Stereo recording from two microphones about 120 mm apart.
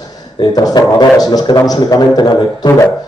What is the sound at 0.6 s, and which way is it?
A man's voice, 35° left (ahead or behind).